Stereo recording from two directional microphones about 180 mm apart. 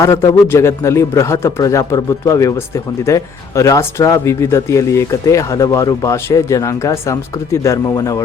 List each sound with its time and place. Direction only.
0.0 s speech: 15° left (ahead or behind)